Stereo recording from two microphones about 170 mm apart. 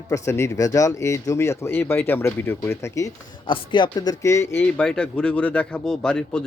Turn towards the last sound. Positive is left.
turn(degrees=5)  # may be behind; listen again after turning